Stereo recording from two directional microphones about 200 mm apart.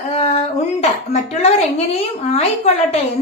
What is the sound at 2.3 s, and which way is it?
Speech, 30° left (ahead or behind).